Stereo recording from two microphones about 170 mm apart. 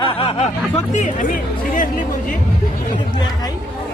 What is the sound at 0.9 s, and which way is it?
Speech, 50° left (ahead or behind).